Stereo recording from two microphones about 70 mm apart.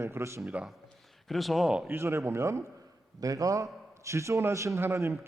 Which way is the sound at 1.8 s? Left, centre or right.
Right.